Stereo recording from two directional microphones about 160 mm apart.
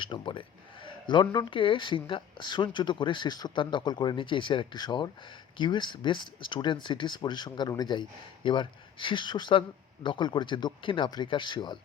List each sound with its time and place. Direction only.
0.0 s speech: 30° left (ahead or behind)